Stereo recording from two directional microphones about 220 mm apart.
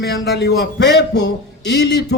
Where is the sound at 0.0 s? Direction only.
50° left (ahead or behind).